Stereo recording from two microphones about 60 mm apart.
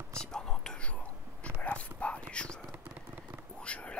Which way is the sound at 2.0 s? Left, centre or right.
Centre.